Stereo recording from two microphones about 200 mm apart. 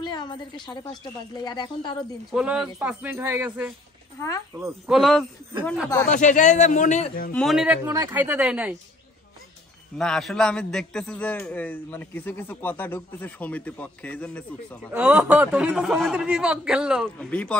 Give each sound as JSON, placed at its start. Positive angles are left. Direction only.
{"t": 0.0, "sound": "a woman's voice", "side_deg": 20}
{"t": 2.3, "sound": "speech", "side_deg": -5}
{"t": 4.9, "sound": "a man's voice", "side_deg": 0}
{"t": 6.0, "sound": "a man's voice", "side_deg": 40}
{"t": 7.3, "sound": "speech", "side_deg": 0}
{"t": 9.9, "sound": "a man's voice", "side_deg": 0}
{"t": 14.9, "sound": "a man's voice", "side_deg": -5}